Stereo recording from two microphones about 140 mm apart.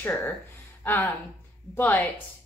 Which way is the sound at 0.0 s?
15° left (ahead or behind).